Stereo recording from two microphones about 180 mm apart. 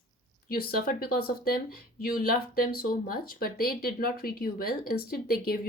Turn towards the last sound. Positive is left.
turn(degrees=55)  # may be behind; listen again after turning